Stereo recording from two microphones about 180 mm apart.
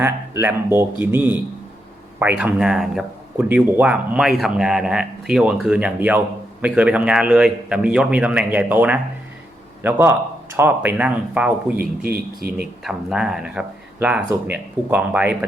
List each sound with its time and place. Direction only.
0.0 s speech: 10° right (ahead or behind)
11.8 s a man's voice: 55° right (ahead or behind)
12.5 s speech: 5° right (ahead or behind)